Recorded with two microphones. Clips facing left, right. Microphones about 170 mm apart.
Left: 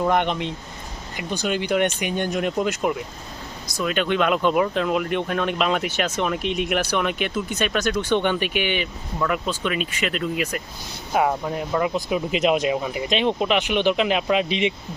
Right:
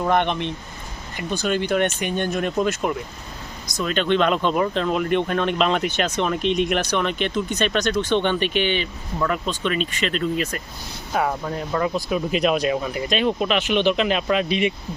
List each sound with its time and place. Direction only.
0.0 s speech: 15° left (ahead or behind)